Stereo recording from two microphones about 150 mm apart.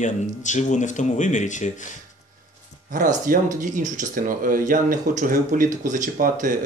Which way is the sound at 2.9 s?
65° right (ahead or behind).